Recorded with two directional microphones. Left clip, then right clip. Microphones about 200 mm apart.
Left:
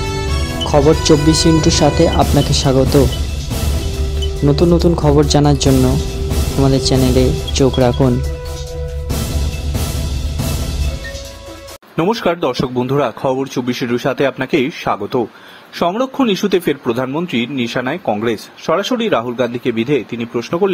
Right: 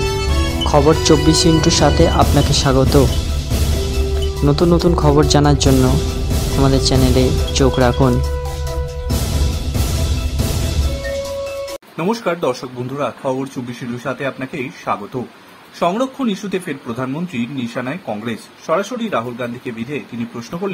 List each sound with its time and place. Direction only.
0.7 s speech: centre (ahead or behind)
4.5 s speech: centre (ahead or behind)
12.0 s speech: 40° left (ahead or behind)